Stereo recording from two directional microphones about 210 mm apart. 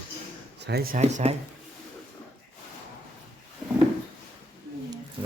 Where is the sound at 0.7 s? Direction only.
45° right (ahead or behind).